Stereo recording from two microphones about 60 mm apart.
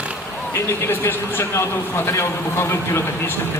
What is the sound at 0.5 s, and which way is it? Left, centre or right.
A man's voice, left.